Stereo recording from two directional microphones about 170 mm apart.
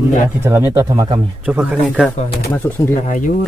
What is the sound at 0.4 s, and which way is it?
Speech, 15° right (ahead or behind).